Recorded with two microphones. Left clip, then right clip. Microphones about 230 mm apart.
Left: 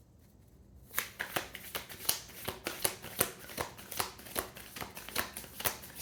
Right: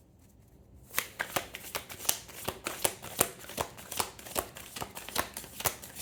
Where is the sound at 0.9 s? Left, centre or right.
Right.